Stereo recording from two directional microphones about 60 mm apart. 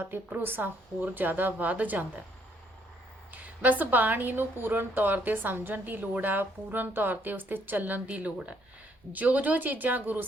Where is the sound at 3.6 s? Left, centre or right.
Right.